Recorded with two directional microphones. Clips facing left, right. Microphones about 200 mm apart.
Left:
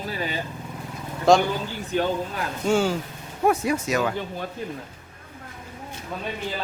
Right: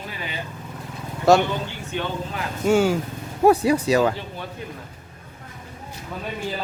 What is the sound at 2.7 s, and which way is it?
Speech, 10° right (ahead or behind).